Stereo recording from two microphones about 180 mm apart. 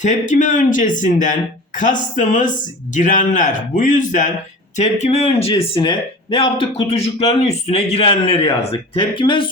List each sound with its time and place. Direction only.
0.0 s speech: 45° left (ahead or behind); by 9.4 s 25° left (ahead or behind)